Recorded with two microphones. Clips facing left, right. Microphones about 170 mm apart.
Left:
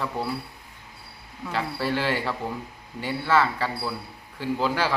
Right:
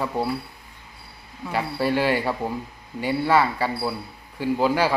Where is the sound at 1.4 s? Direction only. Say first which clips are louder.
Right 3 dB; 10° right (ahead or behind).